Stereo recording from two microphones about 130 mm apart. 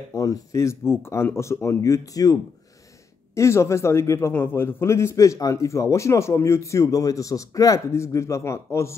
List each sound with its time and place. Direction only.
0.1 s a man's voice: 25° left (ahead or behind)
3.3 s a man's voice: 20° left (ahead or behind)